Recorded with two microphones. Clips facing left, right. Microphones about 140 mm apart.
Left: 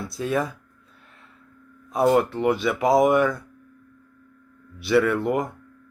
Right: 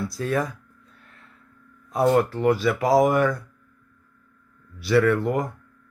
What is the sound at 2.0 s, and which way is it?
Speech, centre (ahead or behind).